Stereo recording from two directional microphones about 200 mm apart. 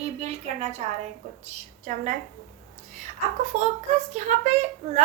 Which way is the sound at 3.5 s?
35° right (ahead or behind).